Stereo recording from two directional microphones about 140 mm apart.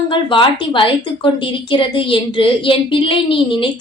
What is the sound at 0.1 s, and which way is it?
A child's voice, 35° left (ahead or behind).